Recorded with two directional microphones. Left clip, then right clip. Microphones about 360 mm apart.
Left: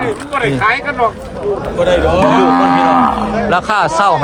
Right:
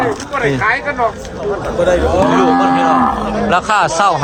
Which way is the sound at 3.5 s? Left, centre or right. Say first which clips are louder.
Right 1 dB; centre.